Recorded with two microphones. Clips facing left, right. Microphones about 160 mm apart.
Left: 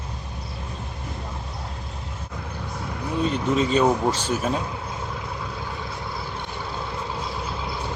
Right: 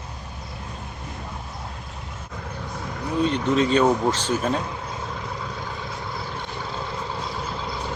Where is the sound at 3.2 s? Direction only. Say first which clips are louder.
Right 1 dB; 5° left (ahead or behind).